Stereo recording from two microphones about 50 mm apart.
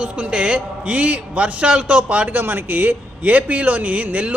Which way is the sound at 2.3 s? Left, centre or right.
Right.